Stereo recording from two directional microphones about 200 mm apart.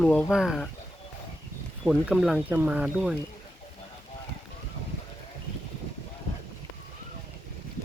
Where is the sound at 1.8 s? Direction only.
Centre (ahead or behind).